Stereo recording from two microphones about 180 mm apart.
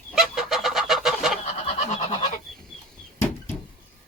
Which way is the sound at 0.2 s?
Centre (ahead or behind).